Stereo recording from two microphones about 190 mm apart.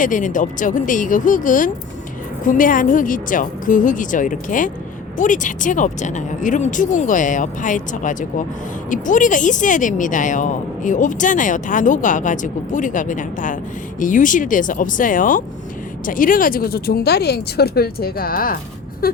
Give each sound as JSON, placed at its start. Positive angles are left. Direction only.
{"t": 0.0, "sound": "speech", "side_deg": 45}